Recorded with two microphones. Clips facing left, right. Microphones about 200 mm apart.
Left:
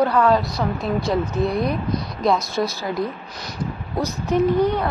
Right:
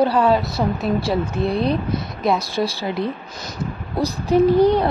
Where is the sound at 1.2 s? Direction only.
30° right (ahead or behind).